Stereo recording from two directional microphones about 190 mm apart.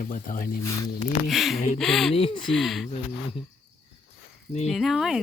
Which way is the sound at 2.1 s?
30° left (ahead or behind).